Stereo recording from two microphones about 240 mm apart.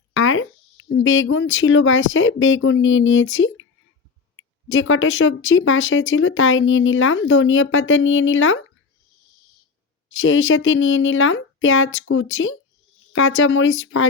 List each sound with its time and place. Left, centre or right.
0.1 s speech: left
4.7 s speech: left
10.1 s speech: left